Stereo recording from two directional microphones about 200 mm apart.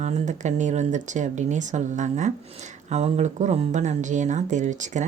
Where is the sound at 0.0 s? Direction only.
35° right (ahead or behind).